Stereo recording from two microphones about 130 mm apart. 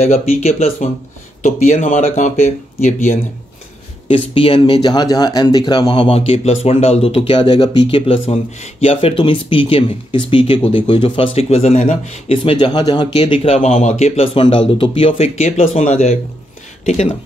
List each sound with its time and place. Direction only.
0.0 s speech: 55° left (ahead or behind)
1.4 s speech: 70° left (ahead or behind)
4.1 s speech: 45° left (ahead or behind)